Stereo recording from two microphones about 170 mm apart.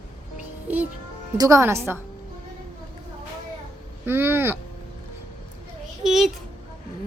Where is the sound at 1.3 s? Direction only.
20° right (ahead or behind).